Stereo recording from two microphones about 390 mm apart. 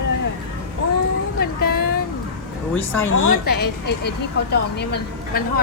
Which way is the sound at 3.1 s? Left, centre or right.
Left.